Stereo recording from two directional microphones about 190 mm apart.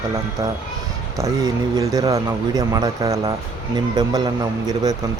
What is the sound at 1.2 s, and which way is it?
A man's voice, 15° right (ahead or behind).